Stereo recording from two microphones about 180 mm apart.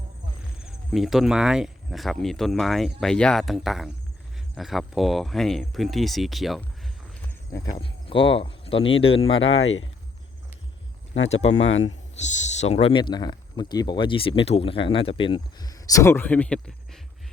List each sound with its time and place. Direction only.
0.6 s speech: centre (ahead or behind)
7.5 s speech: 20° left (ahead or behind)
7.8 s speech: 30° left (ahead or behind)
9.4 s speech: 90° left
11.6 s speech: 90° left
12.1 s speech: 40° left (ahead or behind); by 17.0 s 5° left (ahead or behind)